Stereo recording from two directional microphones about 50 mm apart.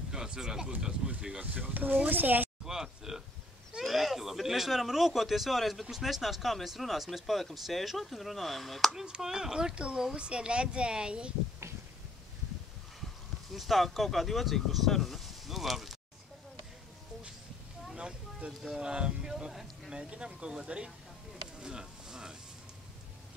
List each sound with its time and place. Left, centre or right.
0.1 s speech: centre
1.4 s speech: right
2.6 s speech: centre
8.9 s speech: centre
13.5 s speech: centre
17.9 s a sound: right
18.7 s speech: centre
19.9 s speech: centre
21.5 s a sound: centre